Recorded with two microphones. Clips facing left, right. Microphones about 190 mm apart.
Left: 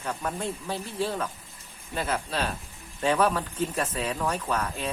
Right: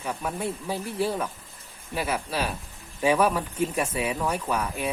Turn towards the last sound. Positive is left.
turn(degrees=-10)  # may be behind; listen again after turning